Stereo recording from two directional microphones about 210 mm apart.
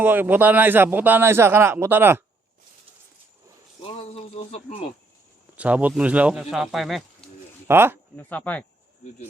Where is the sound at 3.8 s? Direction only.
30° left (ahead or behind).